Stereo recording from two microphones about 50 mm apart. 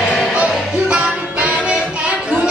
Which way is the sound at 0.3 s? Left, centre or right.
Centre.